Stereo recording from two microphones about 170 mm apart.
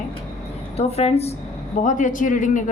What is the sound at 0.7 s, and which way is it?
Speech, 35° left (ahead or behind).